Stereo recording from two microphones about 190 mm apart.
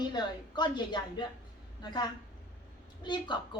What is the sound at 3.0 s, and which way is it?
Speech, 25° left (ahead or behind).